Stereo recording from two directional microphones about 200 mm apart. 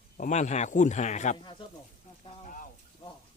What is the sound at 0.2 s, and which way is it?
Speech, 35° left (ahead or behind).